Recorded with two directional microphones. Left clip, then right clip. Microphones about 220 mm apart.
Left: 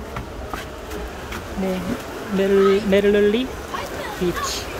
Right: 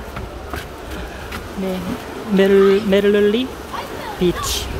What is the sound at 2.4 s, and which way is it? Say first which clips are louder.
Speech: right 4 dB; 10° right (ahead or behind).